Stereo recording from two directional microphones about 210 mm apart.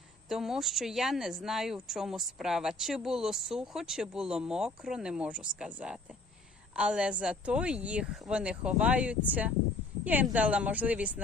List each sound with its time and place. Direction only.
0.3 s a woman's voice: centre (ahead or behind)